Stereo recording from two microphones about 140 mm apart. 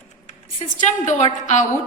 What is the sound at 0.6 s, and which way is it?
Speech, 55° left (ahead or behind).